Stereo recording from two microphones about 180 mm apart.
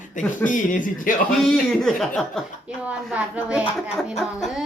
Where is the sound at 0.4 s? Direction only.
45° left (ahead or behind).